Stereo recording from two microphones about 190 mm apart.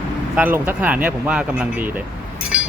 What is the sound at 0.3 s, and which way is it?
Speech, 10° right (ahead or behind).